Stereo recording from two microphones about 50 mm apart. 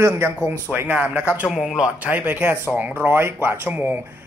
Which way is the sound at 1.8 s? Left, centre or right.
Right.